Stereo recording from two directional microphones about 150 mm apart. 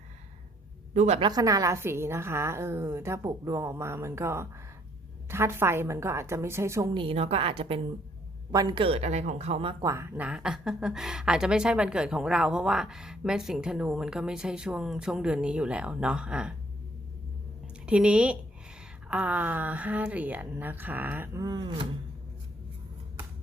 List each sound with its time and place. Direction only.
0.9 s a woman's voice: 50° right (ahead or behind)
1.2 s a woman's voice: 25° right (ahead or behind)
6.9 s speech: 35° right (ahead or behind)
8.5 s speech: 30° right (ahead or behind)
9.8 s speech: 20° right (ahead or behind)
17.8 s a woman's voice: 5° right (ahead or behind)
21.4 s speech: 25° right (ahead or behind)